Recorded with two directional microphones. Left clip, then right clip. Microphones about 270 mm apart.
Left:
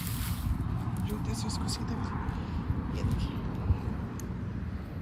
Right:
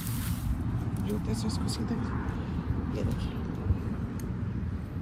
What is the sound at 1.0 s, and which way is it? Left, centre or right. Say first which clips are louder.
Speech: right 5 dB; centre.